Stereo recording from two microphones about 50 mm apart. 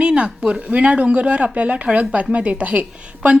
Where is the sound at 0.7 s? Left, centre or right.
Right.